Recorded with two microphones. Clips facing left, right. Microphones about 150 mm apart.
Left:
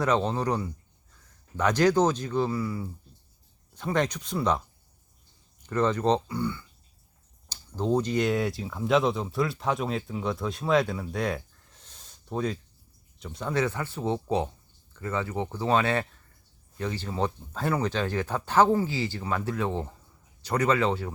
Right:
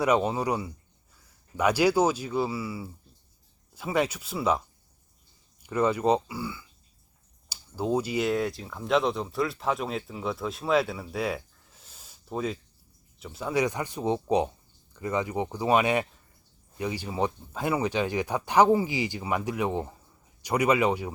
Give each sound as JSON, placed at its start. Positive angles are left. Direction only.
{"t": 0.0, "sound": "speech", "side_deg": -10}
{"t": 5.6, "sound": "speech", "side_deg": -10}